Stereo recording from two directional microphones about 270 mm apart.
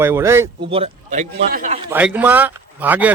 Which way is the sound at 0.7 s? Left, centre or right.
Right.